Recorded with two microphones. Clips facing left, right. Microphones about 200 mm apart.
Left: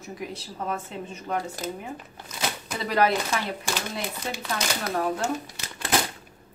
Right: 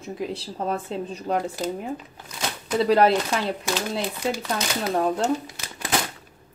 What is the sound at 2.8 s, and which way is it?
Speech, 30° right (ahead or behind).